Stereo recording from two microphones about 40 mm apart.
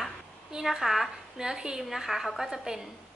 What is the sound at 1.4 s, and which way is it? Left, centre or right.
Speech, centre.